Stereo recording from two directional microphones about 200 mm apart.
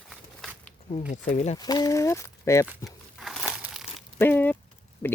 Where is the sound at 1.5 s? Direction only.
20° left (ahead or behind).